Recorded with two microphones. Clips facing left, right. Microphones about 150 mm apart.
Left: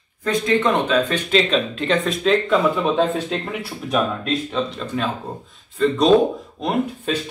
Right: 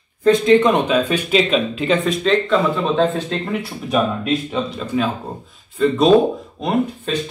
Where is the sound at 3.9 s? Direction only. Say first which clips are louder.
Right 3 dB; 10° right (ahead or behind).